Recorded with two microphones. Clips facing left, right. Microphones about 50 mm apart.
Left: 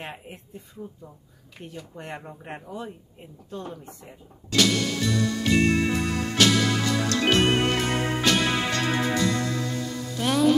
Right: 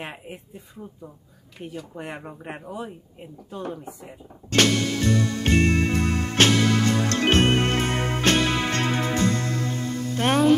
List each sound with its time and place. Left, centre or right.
0.0 s speech: centre
1.6 s speech: centre
4.5 s music: right